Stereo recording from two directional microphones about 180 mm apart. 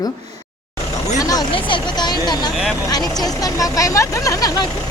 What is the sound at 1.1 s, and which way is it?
A woman's voice, 20° left (ahead or behind).